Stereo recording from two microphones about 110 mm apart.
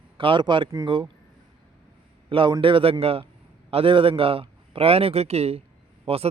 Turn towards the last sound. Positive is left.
turn(degrees=-65)  # may be behind; listen again after turning